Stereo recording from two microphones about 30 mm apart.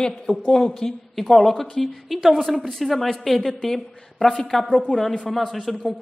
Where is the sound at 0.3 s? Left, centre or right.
Left; by 3.2 s centre.